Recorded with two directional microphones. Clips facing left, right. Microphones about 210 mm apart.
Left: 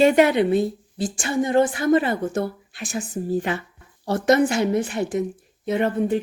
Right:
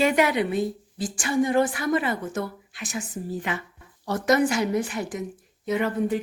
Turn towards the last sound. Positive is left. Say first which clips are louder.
# left 3 dB
turn(degrees=30)  # may be behind; listen again after turning